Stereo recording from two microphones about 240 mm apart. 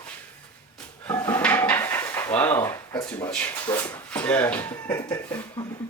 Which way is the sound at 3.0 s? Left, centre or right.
Centre.